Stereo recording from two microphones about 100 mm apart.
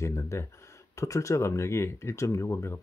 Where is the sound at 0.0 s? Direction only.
30° left (ahead or behind).